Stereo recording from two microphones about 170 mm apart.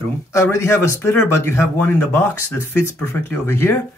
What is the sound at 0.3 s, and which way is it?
Speech, 15° left (ahead or behind).